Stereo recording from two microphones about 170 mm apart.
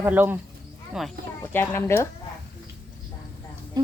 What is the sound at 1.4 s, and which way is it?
Speech, 10° left (ahead or behind).